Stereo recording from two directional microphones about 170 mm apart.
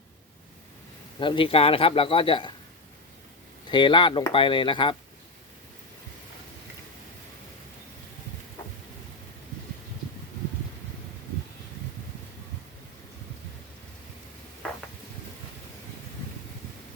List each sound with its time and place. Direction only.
1.2 s speech: 30° left (ahead or behind)
3.7 s speech: 25° left (ahead or behind)